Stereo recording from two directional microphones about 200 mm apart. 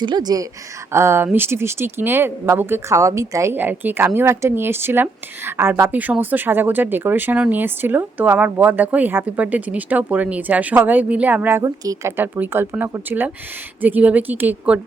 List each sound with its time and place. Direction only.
0.0 s speech: 20° right (ahead or behind)